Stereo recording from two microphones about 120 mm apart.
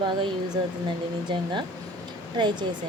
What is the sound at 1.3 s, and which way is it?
A woman's voice, 40° right (ahead or behind).